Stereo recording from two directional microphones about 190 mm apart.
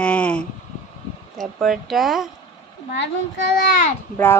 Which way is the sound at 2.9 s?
65° left (ahead or behind).